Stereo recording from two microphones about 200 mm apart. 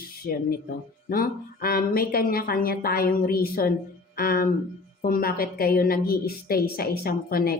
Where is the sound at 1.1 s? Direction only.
50° left (ahead or behind).